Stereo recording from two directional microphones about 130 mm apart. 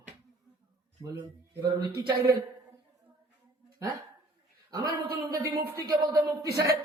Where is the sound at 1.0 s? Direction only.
30° right (ahead or behind).